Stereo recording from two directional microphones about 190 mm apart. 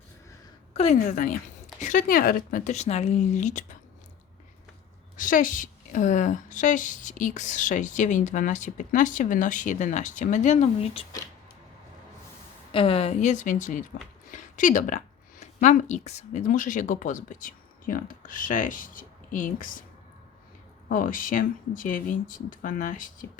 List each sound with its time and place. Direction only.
0.7 s a woman's voice: 35° left (ahead or behind)
5.1 s a woman's voice: 45° left (ahead or behind)
12.7 s a woman's voice: 30° left (ahead or behind); by 19.8 s 45° left (ahead or behind)
20.9 s speech: 45° left (ahead or behind)